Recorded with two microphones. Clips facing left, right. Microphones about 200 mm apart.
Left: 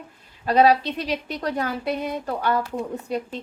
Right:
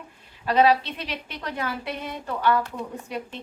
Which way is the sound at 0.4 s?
40° left (ahead or behind).